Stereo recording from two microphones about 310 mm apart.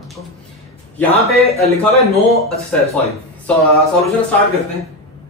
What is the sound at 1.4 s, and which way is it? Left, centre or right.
Speech, centre.